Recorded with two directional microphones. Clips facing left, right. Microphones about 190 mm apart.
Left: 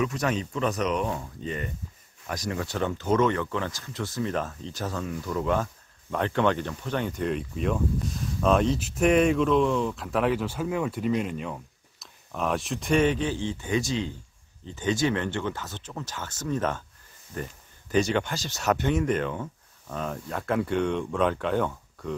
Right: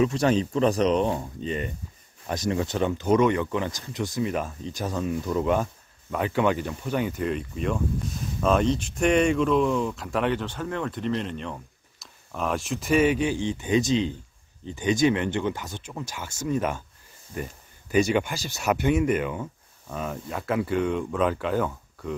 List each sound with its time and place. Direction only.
0.0 s speech: 30° right (ahead or behind)
6.0 s speech: 5° right (ahead or behind)